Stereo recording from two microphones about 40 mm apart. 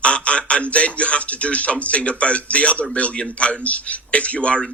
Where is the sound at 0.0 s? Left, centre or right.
Left.